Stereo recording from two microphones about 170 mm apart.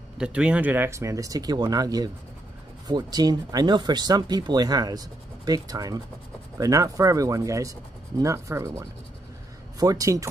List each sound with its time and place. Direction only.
0.2 s speech: 5° right (ahead or behind)